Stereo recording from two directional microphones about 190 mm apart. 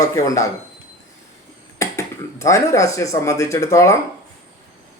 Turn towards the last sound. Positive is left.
turn(degrees=15)  # may be behind; listen again after turning